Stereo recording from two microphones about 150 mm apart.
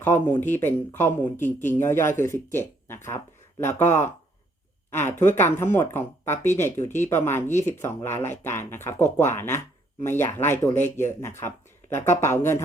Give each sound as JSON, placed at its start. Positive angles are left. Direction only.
{"t": 0.0, "sound": "speech", "side_deg": 15}